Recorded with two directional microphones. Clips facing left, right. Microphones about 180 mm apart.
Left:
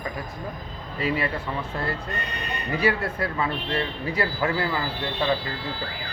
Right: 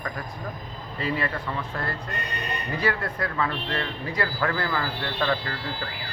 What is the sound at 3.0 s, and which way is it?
Speech, 25° left (ahead or behind).